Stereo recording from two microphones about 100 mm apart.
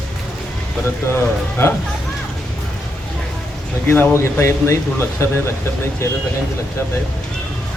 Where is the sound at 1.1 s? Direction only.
25° left (ahead or behind).